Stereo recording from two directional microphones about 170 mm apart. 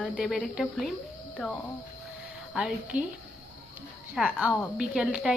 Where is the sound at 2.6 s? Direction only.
5° right (ahead or behind).